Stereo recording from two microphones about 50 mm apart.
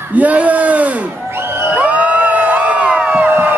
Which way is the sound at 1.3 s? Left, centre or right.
Right.